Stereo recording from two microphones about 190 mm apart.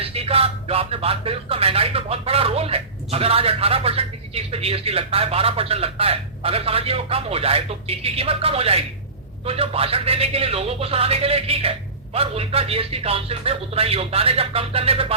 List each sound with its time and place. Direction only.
0.0 s speech: 30° right (ahead or behind)